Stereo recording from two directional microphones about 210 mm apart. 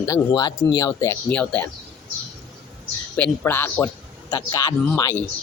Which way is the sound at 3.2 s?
10° left (ahead or behind).